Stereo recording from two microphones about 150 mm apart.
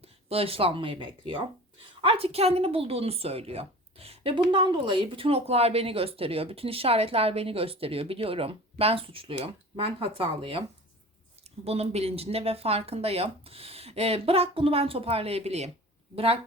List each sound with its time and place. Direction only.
0.0 s speech: 40° right (ahead or behind)
11.6 s speech: 45° right (ahead or behind)